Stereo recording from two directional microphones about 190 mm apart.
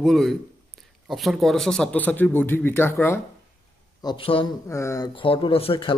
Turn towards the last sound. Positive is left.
turn(degrees=30)  # may be behind; listen again after turning